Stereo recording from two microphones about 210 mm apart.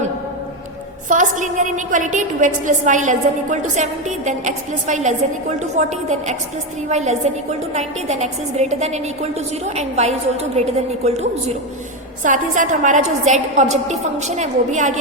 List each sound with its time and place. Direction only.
1.0 s a woman's voice: 40° right (ahead or behind)